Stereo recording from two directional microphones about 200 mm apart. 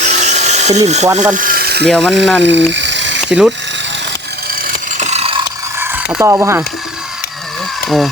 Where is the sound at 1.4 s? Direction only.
45° right (ahead or behind).